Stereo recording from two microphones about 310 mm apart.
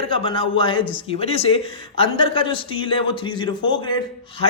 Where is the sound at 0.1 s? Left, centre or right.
Centre.